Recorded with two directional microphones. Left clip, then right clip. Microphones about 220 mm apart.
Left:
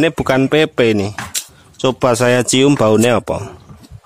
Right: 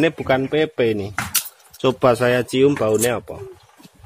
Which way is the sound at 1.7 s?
20° left (ahead or behind).